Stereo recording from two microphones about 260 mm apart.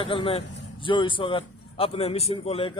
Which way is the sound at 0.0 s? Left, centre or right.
Centre.